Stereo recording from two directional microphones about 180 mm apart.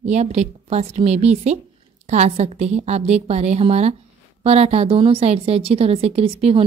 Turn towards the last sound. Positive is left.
turn(degrees=-35)  # may be behind; listen again after turning